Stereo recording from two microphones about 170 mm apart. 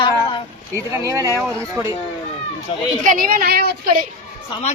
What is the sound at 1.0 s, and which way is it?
Speech, 20° right (ahead or behind).